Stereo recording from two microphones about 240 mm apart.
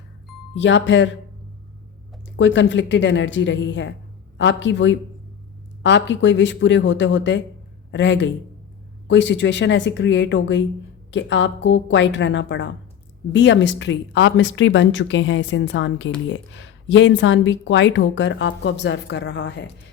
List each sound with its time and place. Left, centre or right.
0.5 s a woman's voice: left
2.3 s a woman's voice: left